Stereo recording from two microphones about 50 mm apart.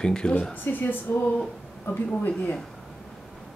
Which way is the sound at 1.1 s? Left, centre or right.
Left.